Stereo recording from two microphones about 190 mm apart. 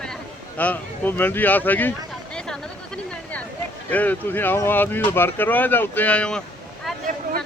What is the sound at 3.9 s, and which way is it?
Speech, 10° left (ahead or behind).